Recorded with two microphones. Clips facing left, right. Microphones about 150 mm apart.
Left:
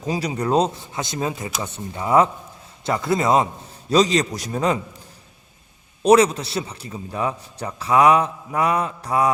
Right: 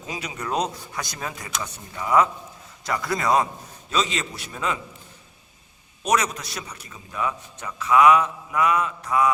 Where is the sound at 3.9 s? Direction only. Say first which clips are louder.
Left 9 dB; 35° left (ahead or behind).